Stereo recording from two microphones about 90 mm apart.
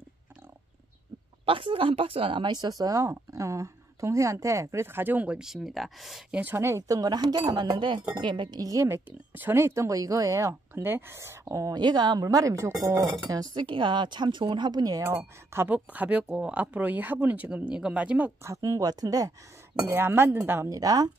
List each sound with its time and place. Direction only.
1.4 s speech: 75° right (ahead or behind); by 6.2 s centre (ahead or behind)
6.5 s speech: 30° right (ahead or behind)
7.0 s a woman's voice: 50° right (ahead or behind)
8.5 s speech: 40° right (ahead or behind)
8.8 s speech: 25° right (ahead or behind)
10.7 s speech: 25° right (ahead or behind)
11.7 s speech: 50° right (ahead or behind)
13.7 s a woman's voice: 65° right (ahead or behind); by 15.0 s 45° right (ahead or behind)
15.0 s speech: 25° right (ahead or behind)
18.4 s speech: 40° right (ahead or behind)
19.7 s speech: 25° right (ahead or behind)
20.7 s speech: 45° right (ahead or behind)